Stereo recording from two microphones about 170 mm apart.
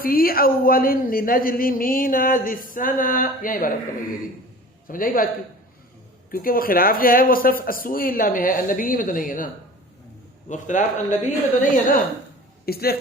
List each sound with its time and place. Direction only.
0.0 s speech: 60° left (ahead or behind)
4.9 s speech: 55° left (ahead or behind)
6.3 s speech: 60° left (ahead or behind)
10.5 s speech: 45° left (ahead or behind)
12.6 s speech: 65° left (ahead or behind)